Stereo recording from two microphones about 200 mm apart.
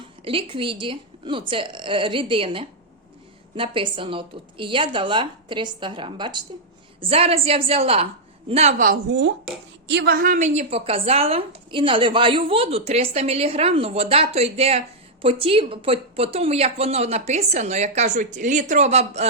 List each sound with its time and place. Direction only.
0.3 s a woman's voice: 25° right (ahead or behind)
9.0 s a woman's voice: 60° right (ahead or behind); by 19.3 s 35° right (ahead or behind)